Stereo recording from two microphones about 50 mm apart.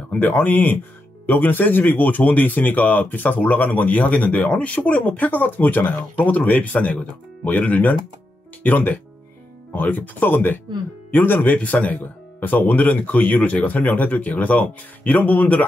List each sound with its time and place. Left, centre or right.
0.2 s speech: left